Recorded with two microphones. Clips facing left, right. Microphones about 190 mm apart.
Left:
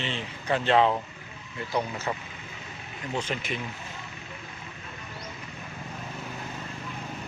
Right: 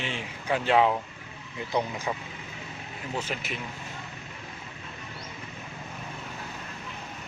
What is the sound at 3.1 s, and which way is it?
Speech, 5° right (ahead or behind).